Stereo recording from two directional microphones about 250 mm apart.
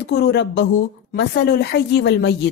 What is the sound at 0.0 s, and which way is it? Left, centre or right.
A woman's voice, left.